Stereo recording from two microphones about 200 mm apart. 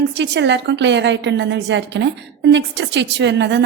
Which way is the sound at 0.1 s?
60° right (ahead or behind).